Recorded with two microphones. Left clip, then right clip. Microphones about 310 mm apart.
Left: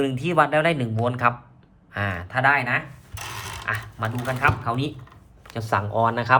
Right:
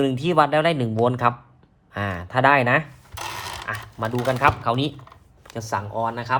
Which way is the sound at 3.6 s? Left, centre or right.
Centre.